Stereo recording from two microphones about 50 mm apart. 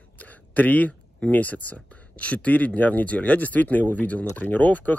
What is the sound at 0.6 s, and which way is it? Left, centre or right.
Speech, left.